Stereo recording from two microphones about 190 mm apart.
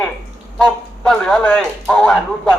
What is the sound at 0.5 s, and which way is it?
Speech, 5° left (ahead or behind).